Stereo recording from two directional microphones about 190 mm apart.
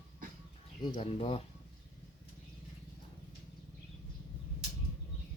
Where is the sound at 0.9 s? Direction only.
30° left (ahead or behind).